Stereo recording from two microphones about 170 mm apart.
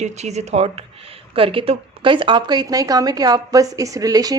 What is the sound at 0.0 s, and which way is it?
Speech, 40° right (ahead or behind).